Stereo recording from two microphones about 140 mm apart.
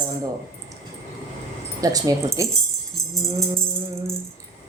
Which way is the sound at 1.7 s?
25° right (ahead or behind).